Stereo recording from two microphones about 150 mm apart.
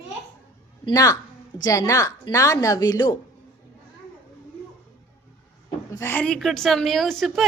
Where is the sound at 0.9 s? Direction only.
25° left (ahead or behind).